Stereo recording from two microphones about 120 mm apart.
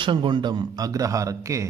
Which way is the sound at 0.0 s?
40° right (ahead or behind).